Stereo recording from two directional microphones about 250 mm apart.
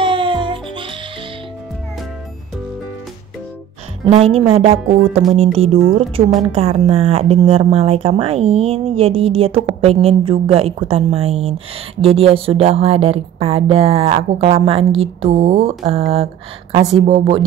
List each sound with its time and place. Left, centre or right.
0.0 s music: centre
4.0 s speech: right